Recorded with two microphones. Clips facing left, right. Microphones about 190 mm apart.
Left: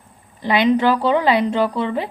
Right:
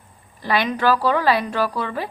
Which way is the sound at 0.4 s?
20° left (ahead or behind).